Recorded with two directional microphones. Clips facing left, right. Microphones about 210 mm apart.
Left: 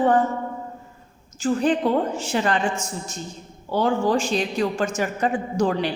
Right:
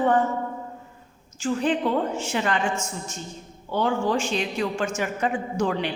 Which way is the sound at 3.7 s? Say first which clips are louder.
Left 3 dB; 35° left (ahead or behind).